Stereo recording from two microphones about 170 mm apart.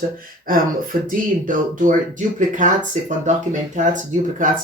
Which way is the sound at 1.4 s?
50° right (ahead or behind).